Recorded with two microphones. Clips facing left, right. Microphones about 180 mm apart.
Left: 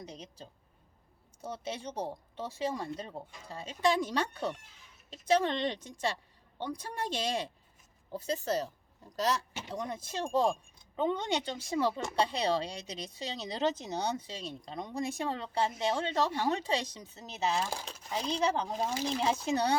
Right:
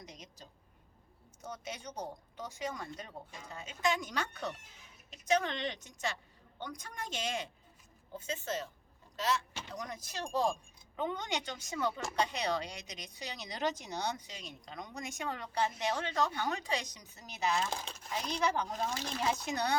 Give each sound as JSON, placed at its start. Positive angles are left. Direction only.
{"t": 0.0, "sound": "a sound", "side_deg": 30}
{"t": 1.4, "sound": "a woman's voice", "side_deg": 30}
{"t": 9.7, "sound": "a woman's voice", "side_deg": 25}
{"t": 17.7, "sound": "speech", "side_deg": 5}
{"t": 18.2, "sound": "a woman's voice", "side_deg": 25}
{"t": 18.9, "sound": "speech", "side_deg": 10}
{"t": 19.2, "sound": "a woman's voice", "side_deg": 30}